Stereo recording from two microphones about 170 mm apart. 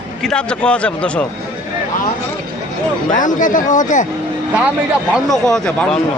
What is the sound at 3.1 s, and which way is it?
Speech, 50° left (ahead or behind).